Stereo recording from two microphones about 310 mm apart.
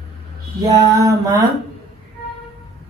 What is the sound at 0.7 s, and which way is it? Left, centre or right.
Speech, centre.